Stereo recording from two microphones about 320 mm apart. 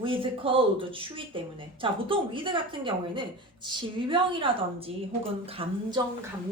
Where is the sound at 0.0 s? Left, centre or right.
Centre.